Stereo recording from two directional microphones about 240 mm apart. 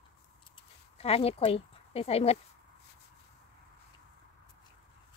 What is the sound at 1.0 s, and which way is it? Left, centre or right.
Speech, left.